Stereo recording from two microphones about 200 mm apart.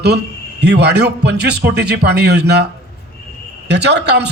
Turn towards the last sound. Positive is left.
turn(degrees=-60)  # may be behind; listen again after turning